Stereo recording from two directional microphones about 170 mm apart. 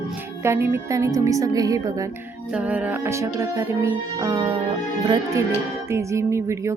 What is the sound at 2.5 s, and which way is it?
Speech, 10° right (ahead or behind).